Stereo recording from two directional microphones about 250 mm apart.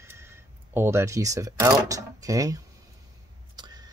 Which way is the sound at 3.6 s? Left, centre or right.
Centre.